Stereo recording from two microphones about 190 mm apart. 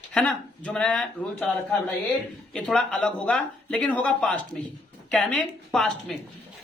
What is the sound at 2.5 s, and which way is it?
Speech, 5° left (ahead or behind).